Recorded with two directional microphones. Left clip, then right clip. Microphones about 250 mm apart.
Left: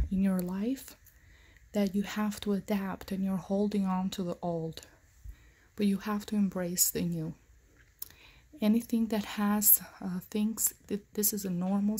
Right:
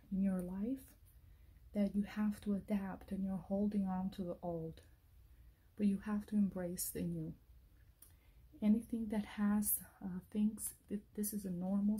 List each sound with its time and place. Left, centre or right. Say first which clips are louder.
0.2 s a sound: left 8 dB; left
1.7 s speech: left 8 dB; left
8.5 s speech: left 8 dB; left